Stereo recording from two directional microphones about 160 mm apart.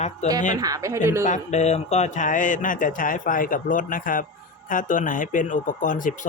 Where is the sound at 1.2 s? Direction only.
50° left (ahead or behind).